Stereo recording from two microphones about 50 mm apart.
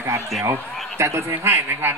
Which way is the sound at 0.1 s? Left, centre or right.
Right.